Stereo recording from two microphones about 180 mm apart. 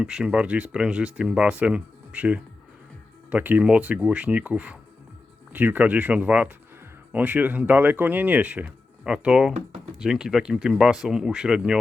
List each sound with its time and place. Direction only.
0.0 s speech: 5° right (ahead or behind)